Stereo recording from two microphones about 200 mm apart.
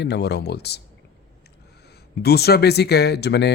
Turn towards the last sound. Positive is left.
turn(degrees=55)  # may be behind; listen again after turning